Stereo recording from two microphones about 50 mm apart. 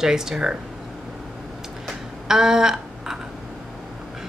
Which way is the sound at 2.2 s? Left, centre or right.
Centre.